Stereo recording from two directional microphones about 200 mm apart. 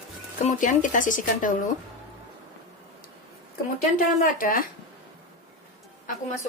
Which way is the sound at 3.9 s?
45° left (ahead or behind).